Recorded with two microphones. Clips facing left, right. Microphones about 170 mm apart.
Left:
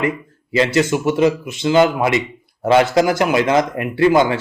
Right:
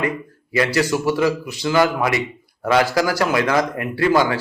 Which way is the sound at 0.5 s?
20° left (ahead or behind).